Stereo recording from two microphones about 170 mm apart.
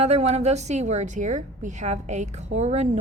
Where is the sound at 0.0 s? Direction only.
40° right (ahead or behind).